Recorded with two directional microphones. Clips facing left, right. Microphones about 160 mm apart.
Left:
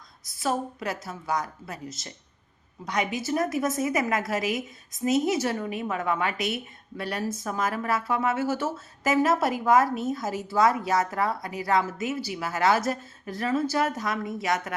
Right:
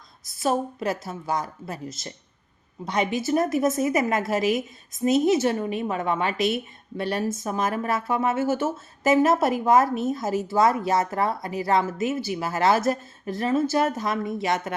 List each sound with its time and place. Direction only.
0.3 s a woman's voice: 25° right (ahead or behind)
2.8 s a woman's voice: 25° right (ahead or behind)